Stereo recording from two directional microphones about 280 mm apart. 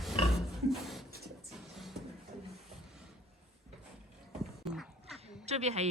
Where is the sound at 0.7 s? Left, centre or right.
Centre.